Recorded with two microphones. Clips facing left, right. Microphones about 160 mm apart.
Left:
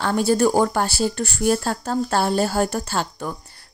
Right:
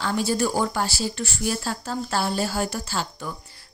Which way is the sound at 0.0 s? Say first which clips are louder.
Left 5 dB; 50° left (ahead or behind).